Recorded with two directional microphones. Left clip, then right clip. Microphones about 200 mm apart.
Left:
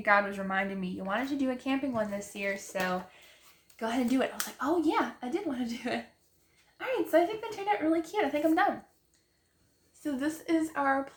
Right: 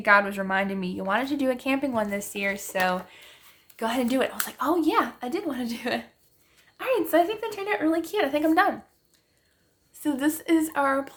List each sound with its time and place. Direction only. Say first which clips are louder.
0.0 s a woman's voice: right 6 dB; 45° right (ahead or behind)
10.0 s a woman's voice: right 7 dB; 45° right (ahead or behind)